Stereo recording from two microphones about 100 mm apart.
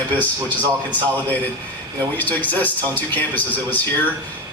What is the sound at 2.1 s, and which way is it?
A man's voice, 15° left (ahead or behind).